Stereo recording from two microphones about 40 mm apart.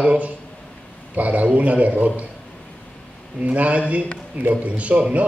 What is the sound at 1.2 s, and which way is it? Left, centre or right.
A man's voice, right.